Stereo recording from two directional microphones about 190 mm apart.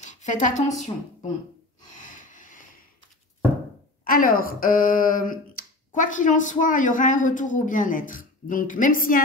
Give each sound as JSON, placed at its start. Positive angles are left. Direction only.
{"t": 0.0, "sound": "a woman's voice", "side_deg": 40}
{"t": 2.3, "sound": "a sound", "side_deg": 45}
{"t": 4.0, "sound": "speech", "side_deg": 50}